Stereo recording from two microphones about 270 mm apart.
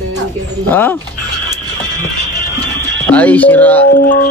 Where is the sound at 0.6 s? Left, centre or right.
Centre.